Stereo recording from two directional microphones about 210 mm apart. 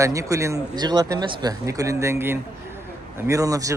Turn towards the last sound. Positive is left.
turn(degrees=-15)  # may be behind; listen again after turning